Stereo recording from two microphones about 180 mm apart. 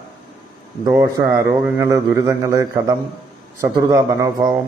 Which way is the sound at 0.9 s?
15° right (ahead or behind).